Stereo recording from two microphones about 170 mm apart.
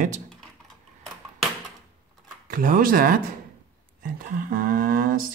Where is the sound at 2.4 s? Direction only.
55° right (ahead or behind).